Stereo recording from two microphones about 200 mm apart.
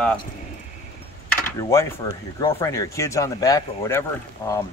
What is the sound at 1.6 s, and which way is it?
Speech, 15° left (ahead or behind).